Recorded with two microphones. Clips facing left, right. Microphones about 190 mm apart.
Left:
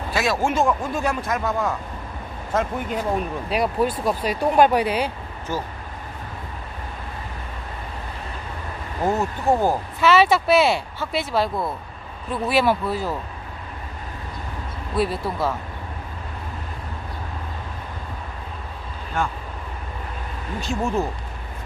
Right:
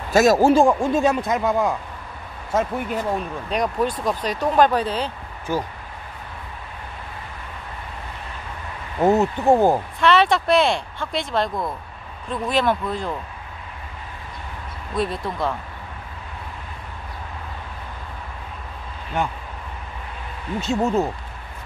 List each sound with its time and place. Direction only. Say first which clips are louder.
0.1 s speech: right 8 dB; 40° right (ahead or behind); by 2.7 s 10° right (ahead or behind)
3.0 s speech: left 1 dB; 5° left (ahead or behind)
5.5 s speech: right 3 dB; 10° right (ahead or behind)
9.0 s speech: right 5 dB; 25° right (ahead or behind)
9.9 s speech: left 1 dB; 5° left (ahead or behind)
15.0 s speech: left 1 dB; 5° left (ahead or behind)
20.6 s speech: right 3 dB; 20° right (ahead or behind)